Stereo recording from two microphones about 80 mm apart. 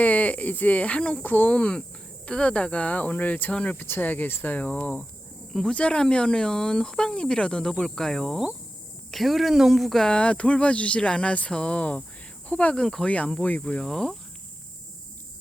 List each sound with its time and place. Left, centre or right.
0.0 s speech: centre